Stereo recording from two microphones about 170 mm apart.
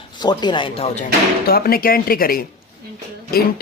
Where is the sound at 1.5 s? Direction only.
60° left (ahead or behind).